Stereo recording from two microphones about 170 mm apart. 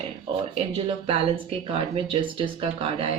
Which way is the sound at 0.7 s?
35° right (ahead or behind).